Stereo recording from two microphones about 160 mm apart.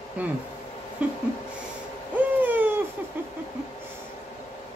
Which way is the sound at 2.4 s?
10° right (ahead or behind).